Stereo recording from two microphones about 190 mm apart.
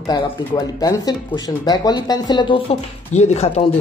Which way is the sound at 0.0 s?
20° left (ahead or behind).